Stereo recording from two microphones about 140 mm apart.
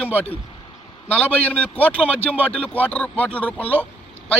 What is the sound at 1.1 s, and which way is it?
A man's voice, 10° left (ahead or behind).